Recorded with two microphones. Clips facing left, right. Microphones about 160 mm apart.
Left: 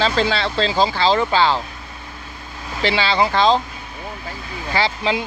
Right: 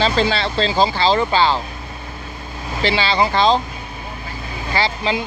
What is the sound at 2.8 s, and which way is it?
Speech, 60° left (ahead or behind).